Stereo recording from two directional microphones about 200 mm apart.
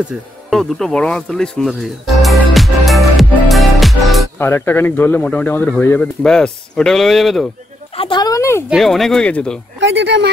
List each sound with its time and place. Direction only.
0.1 s speech: 5° right (ahead or behind)
4.4 s speech: 10° left (ahead or behind)
7.9 s speech: 25° left (ahead or behind)
8.6 s speech: centre (ahead or behind)
9.8 s a sound: 60° right (ahead or behind)